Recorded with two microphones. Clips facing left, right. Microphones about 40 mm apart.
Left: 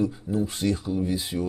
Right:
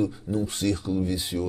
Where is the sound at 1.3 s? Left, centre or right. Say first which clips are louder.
Right 2 dB; centre.